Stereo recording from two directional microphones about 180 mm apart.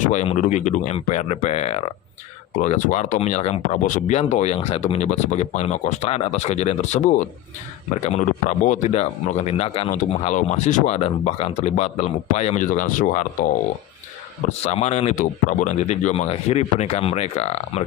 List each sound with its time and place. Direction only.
0.0 s speech: 40° left (ahead or behind)
14.4 s speech: 35° left (ahead or behind)